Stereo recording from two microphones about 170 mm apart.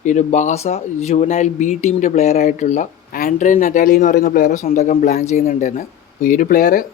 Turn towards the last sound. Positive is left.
turn(degrees=55)  # may be behind; listen again after turning